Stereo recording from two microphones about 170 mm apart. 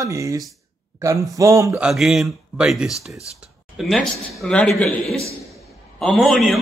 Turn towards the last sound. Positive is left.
turn(degrees=0)  # may be behind; listen again after turning